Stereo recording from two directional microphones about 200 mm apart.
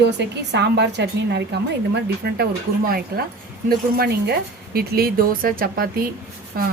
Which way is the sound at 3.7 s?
50° right (ahead or behind).